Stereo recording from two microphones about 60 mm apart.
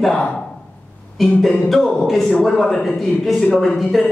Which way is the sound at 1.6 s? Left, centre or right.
Centre.